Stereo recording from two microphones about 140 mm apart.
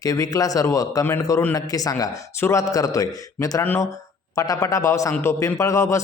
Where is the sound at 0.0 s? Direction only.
25° left (ahead or behind).